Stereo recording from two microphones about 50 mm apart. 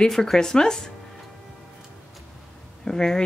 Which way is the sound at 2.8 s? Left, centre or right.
Centre.